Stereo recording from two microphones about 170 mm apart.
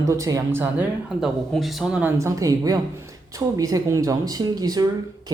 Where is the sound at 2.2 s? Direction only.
20° right (ahead or behind).